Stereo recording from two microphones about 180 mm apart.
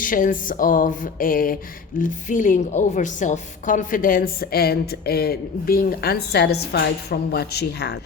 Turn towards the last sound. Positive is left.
turn(degrees=65)  # may be behind; listen again after turning